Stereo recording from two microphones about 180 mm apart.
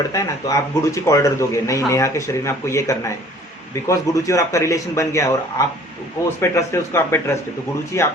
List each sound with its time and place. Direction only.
0.1 s speech: 20° left (ahead or behind)